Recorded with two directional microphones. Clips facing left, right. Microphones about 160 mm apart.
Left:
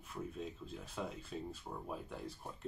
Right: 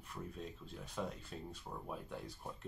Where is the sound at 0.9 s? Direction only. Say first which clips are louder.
Even; 5° left (ahead or behind).